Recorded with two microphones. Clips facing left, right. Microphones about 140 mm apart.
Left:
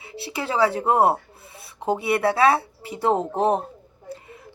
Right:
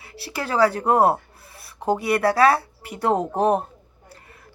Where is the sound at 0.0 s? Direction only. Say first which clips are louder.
Left 1 dB; 20° left (ahead or behind).